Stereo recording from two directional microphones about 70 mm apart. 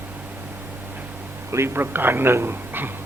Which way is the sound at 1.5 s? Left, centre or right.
Right.